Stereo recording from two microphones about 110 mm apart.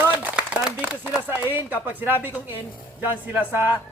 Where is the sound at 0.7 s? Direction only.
20° right (ahead or behind).